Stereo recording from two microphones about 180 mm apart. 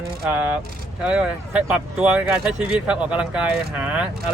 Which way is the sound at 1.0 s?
5° right (ahead or behind).